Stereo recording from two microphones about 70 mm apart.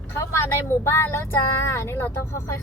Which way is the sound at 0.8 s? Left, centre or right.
Left.